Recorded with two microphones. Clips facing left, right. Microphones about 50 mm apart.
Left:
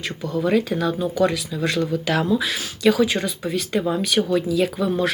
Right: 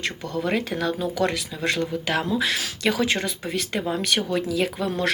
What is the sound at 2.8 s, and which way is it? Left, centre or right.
Speech, right.